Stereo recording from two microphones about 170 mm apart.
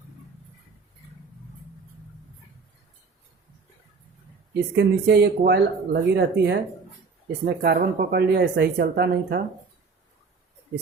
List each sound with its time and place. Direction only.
4.7 s speech: 80° right